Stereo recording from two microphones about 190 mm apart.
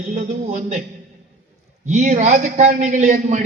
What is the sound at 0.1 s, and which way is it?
Speech, 40° right (ahead or behind).